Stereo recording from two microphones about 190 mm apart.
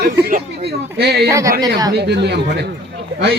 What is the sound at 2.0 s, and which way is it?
Speech, 60° right (ahead or behind).